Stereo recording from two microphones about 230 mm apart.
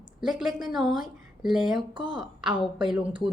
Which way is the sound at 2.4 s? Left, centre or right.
Centre.